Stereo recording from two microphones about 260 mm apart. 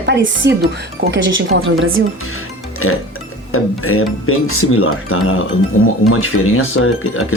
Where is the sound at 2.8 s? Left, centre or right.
Left.